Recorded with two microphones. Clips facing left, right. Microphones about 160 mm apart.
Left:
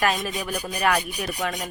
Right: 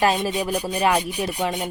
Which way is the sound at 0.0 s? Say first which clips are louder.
Right 4 dB; 30° right (ahead or behind).